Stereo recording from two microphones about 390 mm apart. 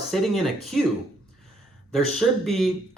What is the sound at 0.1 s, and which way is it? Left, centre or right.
Speech, centre.